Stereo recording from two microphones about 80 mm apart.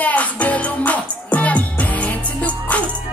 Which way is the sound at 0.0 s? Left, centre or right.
Centre.